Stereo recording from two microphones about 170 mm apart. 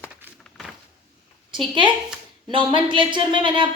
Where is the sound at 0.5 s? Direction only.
Centre (ahead or behind).